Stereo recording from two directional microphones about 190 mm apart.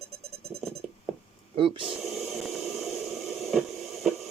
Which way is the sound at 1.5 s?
25° right (ahead or behind).